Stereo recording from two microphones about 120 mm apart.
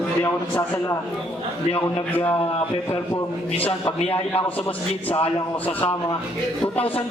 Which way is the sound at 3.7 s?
50° left (ahead or behind).